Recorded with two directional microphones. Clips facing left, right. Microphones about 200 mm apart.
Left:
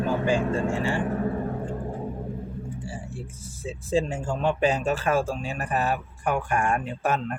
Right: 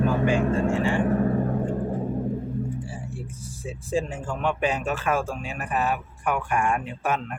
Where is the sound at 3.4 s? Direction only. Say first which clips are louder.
Even; 25° left (ahead or behind).